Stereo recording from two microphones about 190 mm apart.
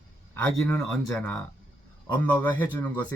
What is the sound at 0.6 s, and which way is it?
A man's voice, 5° left (ahead or behind).